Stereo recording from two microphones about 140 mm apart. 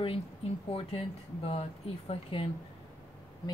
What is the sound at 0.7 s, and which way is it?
Speech, 45° left (ahead or behind).